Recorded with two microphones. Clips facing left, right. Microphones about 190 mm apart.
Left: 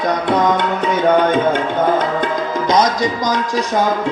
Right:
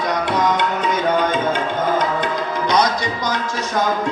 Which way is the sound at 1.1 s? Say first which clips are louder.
Left 5 dB; 60° left (ahead or behind).